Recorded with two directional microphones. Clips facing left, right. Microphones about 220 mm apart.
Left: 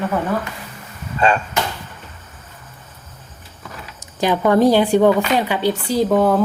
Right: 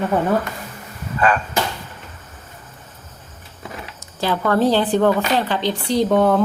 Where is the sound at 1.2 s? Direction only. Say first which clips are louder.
Left 1 dB; 25° left (ahead or behind).